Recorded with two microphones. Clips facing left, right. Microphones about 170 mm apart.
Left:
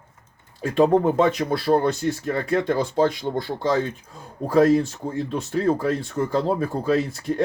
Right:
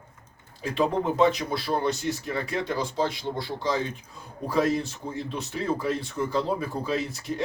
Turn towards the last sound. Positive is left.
turn(degrees=50)  # may be behind; listen again after turning